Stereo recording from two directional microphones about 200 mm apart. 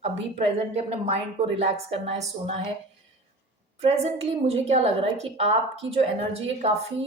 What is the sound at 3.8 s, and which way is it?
A woman's voice, 30° right (ahead or behind).